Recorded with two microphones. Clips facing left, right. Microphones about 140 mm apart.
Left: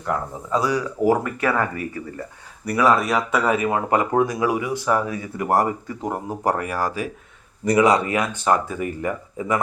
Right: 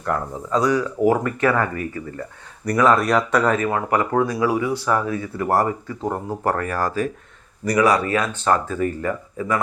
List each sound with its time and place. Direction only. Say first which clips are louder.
0.0 s speech: right 1 dB; 10° left (ahead or behind)
2.6 s speech: right 2 dB; 5° left (ahead or behind)
7.6 s speech: left 1 dB; 20° left (ahead or behind)